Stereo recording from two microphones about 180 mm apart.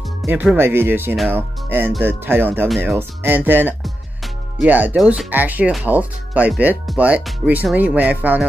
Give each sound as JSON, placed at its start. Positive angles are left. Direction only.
{"t": 0.3, "sound": "speech", "side_deg": -10}